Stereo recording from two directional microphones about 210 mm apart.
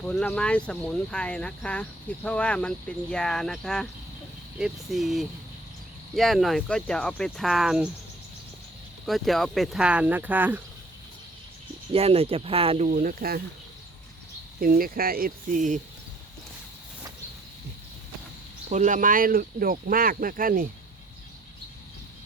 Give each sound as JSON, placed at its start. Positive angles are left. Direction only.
{"t": 0.0, "sound": "speech", "side_deg": 5}
{"t": 9.0, "sound": "speech", "side_deg": 0}
{"t": 11.9, "sound": "speech", "side_deg": -25}
{"t": 12.9, "sound": "speech", "side_deg": -40}
{"t": 14.6, "sound": "speech", "side_deg": -45}
{"t": 18.7, "sound": "speech", "side_deg": -35}